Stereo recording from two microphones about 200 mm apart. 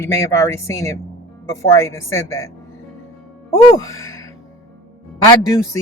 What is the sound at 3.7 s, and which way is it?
Speech, 15° left (ahead or behind).